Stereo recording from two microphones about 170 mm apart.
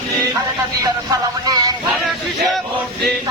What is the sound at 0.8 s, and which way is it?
Music, 25° right (ahead or behind).